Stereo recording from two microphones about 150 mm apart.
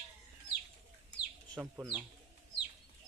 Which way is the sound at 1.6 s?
10° right (ahead or behind).